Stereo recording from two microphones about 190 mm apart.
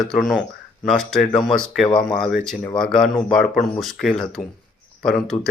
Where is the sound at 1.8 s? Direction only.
20° left (ahead or behind).